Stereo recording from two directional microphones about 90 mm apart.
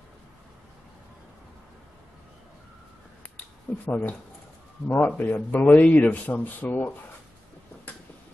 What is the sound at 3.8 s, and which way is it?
Speech, 20° left (ahead or behind).